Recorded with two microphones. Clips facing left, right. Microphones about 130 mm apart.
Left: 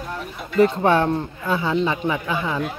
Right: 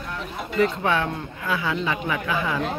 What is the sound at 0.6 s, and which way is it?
Speech, 40° left (ahead or behind).